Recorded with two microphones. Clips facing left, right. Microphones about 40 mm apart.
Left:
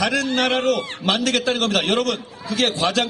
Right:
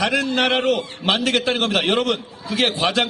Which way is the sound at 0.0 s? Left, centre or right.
Centre.